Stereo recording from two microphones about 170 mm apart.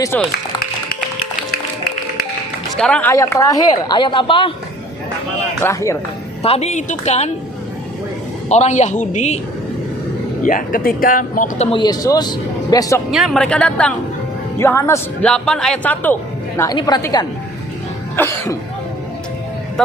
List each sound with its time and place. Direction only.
0.1 s a man's voice: 10° left (ahead or behind)
2.7 s a woman's voice: 5° left (ahead or behind); by 4.5 s 30° left (ahead or behind)
5.6 s a man's voice: 15° left (ahead or behind)
6.4 s speech: 40° left (ahead or behind)
8.4 s speech: 40° left (ahead or behind)
10.4 s speech: 50° left (ahead or behind)
11.8 s a woman's voice: 20° left (ahead or behind)
13.1 s a man's voice: centre (ahead or behind); by 15.0 s 15° left (ahead or behind)
15.2 s a man's voice: 5° left (ahead or behind)
16.6 s a woman's voice: 20° left (ahead or behind)